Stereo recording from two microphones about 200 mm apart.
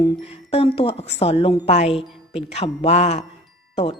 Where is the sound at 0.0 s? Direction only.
30° left (ahead or behind).